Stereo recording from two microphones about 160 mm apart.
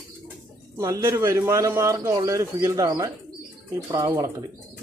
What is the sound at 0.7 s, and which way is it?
A man's voice, 20° right (ahead or behind).